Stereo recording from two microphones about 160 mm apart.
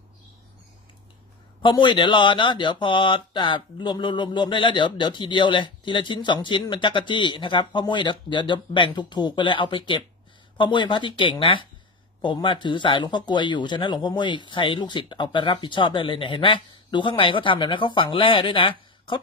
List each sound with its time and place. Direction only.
1.6 s speech: 30° left (ahead or behind)